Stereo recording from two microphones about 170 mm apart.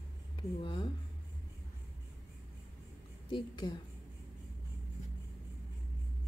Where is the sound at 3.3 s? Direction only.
25° left (ahead or behind).